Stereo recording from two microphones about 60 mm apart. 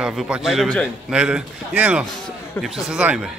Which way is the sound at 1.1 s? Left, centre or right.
Centre.